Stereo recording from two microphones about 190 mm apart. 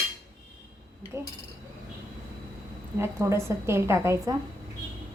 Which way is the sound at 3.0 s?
15° right (ahead or behind).